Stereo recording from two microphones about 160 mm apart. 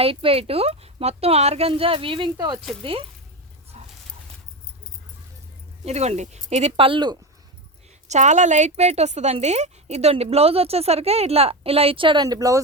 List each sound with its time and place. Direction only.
0.0 s a woman's voice: 35° right (ahead or behind)
3.7 s a sound: 40° right (ahead or behind)
5.8 s a woman's voice: 45° right (ahead or behind)
8.0 s a woman's voice: 45° right (ahead or behind); by 12.6 s 20° right (ahead or behind)